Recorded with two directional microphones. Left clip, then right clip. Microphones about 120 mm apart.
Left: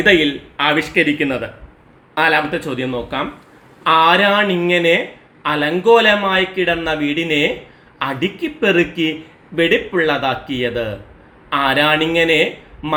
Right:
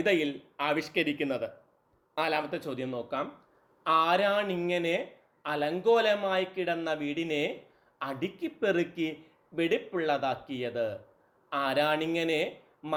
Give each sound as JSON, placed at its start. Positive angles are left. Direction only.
{"t": 0.0, "sound": "a man's voice", "side_deg": -25}